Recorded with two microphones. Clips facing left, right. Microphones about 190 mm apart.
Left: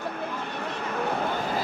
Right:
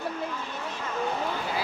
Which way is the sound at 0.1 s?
60° left (ahead or behind).